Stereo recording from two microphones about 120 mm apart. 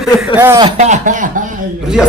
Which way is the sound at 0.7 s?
90° right.